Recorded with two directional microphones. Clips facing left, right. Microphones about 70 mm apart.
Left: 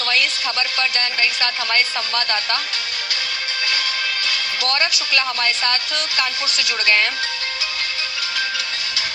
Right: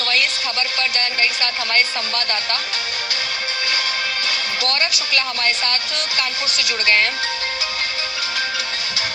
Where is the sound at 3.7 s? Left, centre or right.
Right.